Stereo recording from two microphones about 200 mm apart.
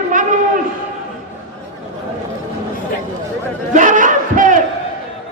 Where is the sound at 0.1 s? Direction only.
40° right (ahead or behind).